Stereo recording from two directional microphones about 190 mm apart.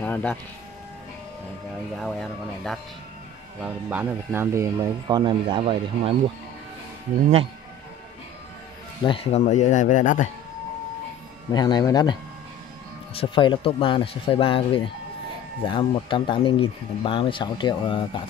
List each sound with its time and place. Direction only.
0.0 s music: 10° left (ahead or behind)
2.0 s speech: centre (ahead or behind)
3.6 s speech: 10° right (ahead or behind); by 6.1 s 30° right (ahead or behind)
9.0 s speech: 30° left (ahead or behind)
11.5 s speech: 20° left (ahead or behind)